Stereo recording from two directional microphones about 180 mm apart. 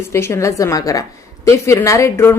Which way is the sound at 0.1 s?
15° left (ahead or behind).